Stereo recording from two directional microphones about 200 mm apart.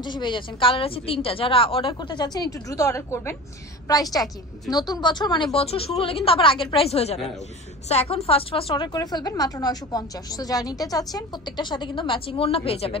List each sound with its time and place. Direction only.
0.0 s a woman's voice: 25° left (ahead or behind)